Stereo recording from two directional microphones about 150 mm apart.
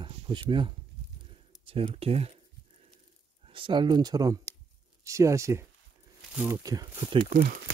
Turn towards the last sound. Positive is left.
turn(degrees=-30)  # may be behind; listen again after turning